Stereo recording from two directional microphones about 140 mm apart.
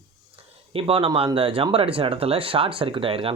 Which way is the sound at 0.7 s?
45° right (ahead or behind).